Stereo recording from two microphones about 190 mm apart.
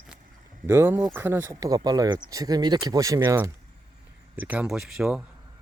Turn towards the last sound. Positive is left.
turn(degrees=-5)  # may be behind; listen again after turning